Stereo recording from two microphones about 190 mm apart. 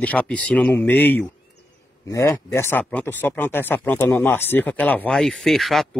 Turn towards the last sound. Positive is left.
turn(degrees=0)  # may be behind; listen again after turning